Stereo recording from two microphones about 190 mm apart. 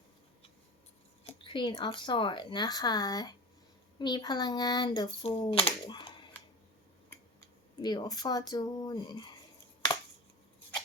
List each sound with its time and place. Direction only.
1.2 s speech: 30° left (ahead or behind)
7.8 s speech: 20° left (ahead or behind)